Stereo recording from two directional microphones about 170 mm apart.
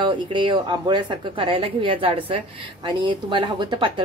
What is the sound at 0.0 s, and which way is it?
Speech, 30° right (ahead or behind).